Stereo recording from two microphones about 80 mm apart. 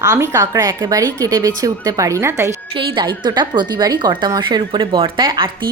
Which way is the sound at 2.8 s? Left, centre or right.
Right.